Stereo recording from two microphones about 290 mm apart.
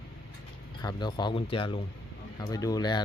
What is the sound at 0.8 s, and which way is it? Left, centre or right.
Speech, centre.